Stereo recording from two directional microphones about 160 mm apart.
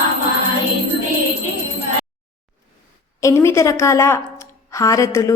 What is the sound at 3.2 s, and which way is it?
A woman's voice, 20° left (ahead or behind).